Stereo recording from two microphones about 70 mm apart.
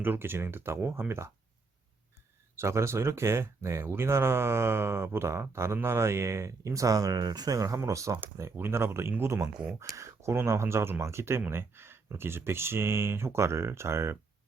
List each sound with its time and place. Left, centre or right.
0.0 s speech: right
2.6 s speech: right
9.7 s speech: right